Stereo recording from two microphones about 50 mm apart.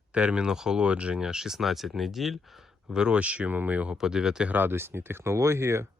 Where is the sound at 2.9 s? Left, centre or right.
Centre.